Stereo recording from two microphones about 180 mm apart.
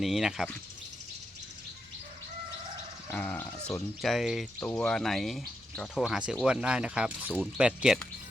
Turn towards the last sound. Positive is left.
turn(degrees=-5)  # may be behind; listen again after turning